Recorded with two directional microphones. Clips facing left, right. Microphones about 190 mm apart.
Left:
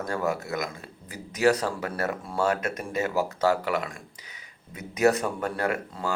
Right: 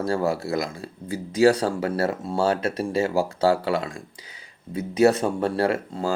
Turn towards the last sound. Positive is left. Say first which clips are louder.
# right 5 dB
turn(degrees=-30)  # may be behind; listen again after turning